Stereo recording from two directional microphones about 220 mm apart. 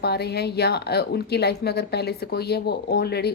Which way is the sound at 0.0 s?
50° left (ahead or behind).